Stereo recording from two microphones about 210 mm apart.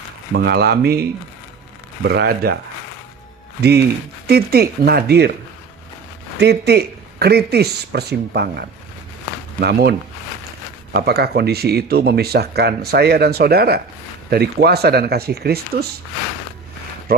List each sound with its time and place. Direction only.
0.3 s speech: 50° right (ahead or behind)
2.0 s speech: 50° right (ahead or behind)
3.6 s speech: 50° right (ahead or behind)
6.4 s speech: 50° right (ahead or behind)
10.9 s speech: 50° right (ahead or behind)